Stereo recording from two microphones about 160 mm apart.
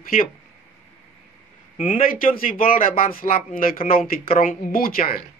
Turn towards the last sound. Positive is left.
turn(degrees=65)  # may be behind; listen again after turning